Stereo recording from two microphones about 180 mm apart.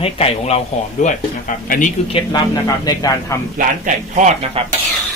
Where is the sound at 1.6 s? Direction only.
45° left (ahead or behind).